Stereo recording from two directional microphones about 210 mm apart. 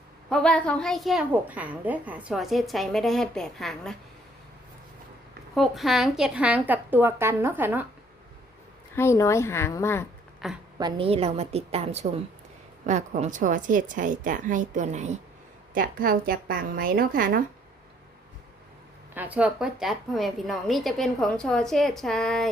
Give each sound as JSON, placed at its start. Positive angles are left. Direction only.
{"t": 0.3, "sound": "a woman's voice", "side_deg": 5}
{"t": 5.5, "sound": "a woman's voice", "side_deg": 0}
{"t": 9.0, "sound": "a woman's voice", "side_deg": 15}
{"t": 10.4, "sound": "a woman's voice", "side_deg": 0}
{"t": 10.8, "sound": "a woman's voice", "side_deg": -20}
{"t": 19.1, "sound": "a woman's voice", "side_deg": -10}